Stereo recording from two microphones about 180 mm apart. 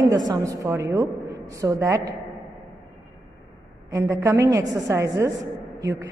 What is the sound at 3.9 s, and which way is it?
A woman's voice, 15° right (ahead or behind).